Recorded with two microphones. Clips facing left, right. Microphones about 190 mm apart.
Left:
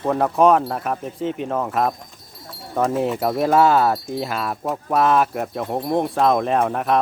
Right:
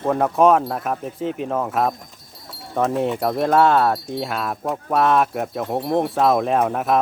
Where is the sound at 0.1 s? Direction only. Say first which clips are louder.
Even; centre (ahead or behind).